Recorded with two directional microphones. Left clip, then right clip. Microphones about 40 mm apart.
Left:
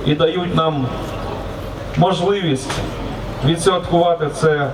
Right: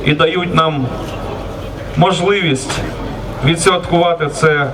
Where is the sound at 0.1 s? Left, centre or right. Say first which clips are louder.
Right 4 dB; centre.